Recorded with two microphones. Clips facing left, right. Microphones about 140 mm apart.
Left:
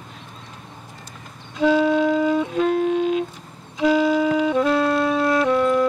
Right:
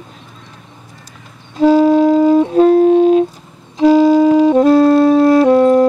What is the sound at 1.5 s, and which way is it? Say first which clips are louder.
Music: right 8 dB; 40° right (ahead or behind).